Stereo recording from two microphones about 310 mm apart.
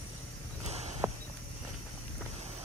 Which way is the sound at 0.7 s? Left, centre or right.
Right.